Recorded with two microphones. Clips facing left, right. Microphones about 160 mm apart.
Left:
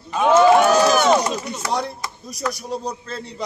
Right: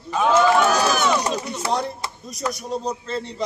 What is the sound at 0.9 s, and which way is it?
Speech, 45° left (ahead or behind).